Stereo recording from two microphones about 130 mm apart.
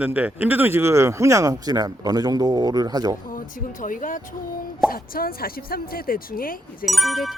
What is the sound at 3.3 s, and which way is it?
Speech, 90° left.